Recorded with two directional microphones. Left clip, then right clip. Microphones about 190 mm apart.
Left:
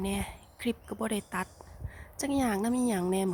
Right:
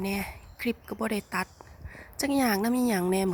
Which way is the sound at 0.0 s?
5° right (ahead or behind).